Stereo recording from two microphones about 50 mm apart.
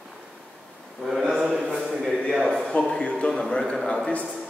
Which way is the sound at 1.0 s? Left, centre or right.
Centre.